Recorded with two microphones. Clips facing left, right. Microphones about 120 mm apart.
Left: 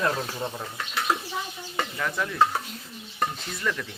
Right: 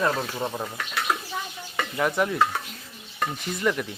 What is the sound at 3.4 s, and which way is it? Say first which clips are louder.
Speech: right 5 dB; 20° right (ahead or behind).